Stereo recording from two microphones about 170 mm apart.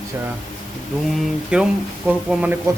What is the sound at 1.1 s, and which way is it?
Speech, centre (ahead or behind).